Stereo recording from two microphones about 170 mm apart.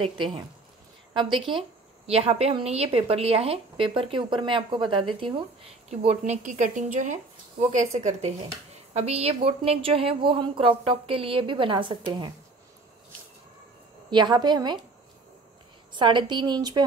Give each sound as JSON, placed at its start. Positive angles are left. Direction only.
{"t": 0.0, "sound": "a woman's voice", "side_deg": -30}
{"t": 5.9, "sound": "a woman's voice", "side_deg": -40}
{"t": 14.1, "sound": "a woman's voice", "side_deg": -25}
{"t": 15.9, "sound": "a woman's voice", "side_deg": -25}